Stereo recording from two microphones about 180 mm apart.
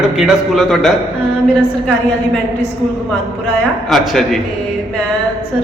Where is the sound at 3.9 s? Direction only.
Centre (ahead or behind).